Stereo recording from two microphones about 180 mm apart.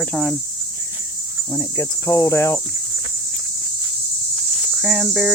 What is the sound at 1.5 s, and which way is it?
Cricket, 15° left (ahead or behind).